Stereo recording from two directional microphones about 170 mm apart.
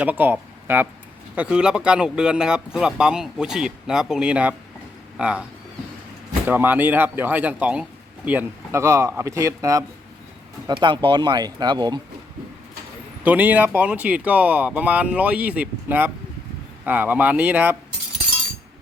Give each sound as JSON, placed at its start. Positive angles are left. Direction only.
{"t": 0.0, "sound": "speech", "side_deg": -10}
{"t": 6.5, "sound": "speech", "side_deg": -10}
{"t": 13.2, "sound": "speech", "side_deg": -10}